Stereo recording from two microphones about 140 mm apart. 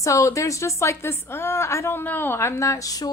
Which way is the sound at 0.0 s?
20° left (ahead or behind).